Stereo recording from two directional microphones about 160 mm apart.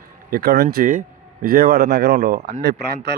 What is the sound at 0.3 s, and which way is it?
Speech, 70° right (ahead or behind).